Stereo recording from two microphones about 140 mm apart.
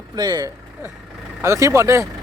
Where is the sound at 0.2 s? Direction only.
30° right (ahead or behind).